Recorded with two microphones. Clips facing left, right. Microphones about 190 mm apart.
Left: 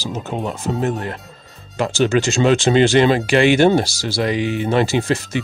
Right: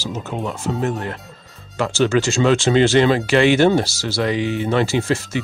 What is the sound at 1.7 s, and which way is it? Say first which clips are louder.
Speech: left 1 dB; 15° left (ahead or behind).